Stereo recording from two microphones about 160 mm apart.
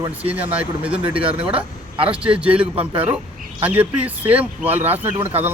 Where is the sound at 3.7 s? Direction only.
10° right (ahead or behind).